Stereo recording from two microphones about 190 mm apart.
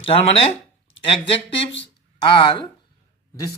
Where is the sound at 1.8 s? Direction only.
25° left (ahead or behind).